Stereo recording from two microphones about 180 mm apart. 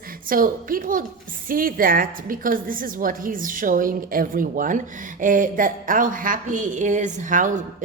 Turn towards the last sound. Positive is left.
turn(degrees=-45)  # may be behind; listen again after turning